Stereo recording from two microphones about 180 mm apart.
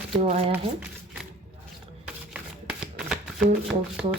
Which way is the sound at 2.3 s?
5° right (ahead or behind).